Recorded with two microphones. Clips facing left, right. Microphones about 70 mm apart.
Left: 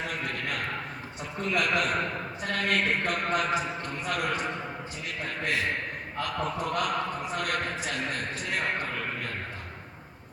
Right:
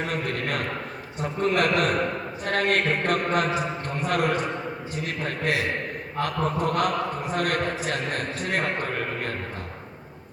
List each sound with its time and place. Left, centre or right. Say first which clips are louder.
0.1 s a sound: right 5 dB; right
2.4 s a man's voice: right 5 dB; right
6.1 s a man's voice: right 5 dB; right